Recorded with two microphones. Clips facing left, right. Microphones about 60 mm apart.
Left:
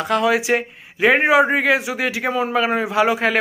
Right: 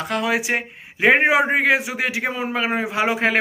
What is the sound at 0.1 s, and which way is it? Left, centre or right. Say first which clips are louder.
A man's voice: left 4 dB; centre.